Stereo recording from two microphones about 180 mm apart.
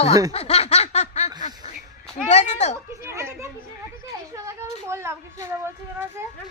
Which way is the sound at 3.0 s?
15° right (ahead or behind).